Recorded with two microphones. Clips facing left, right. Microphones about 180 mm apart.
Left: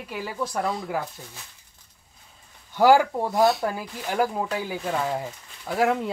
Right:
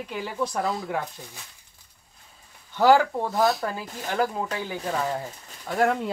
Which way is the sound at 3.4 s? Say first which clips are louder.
Left 3 dB; centre (ahead or behind).